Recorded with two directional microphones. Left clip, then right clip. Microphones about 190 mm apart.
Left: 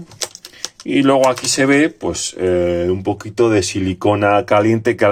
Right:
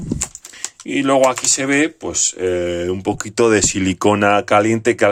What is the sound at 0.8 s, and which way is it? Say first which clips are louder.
Speech: left 1 dB; centre (ahead or behind).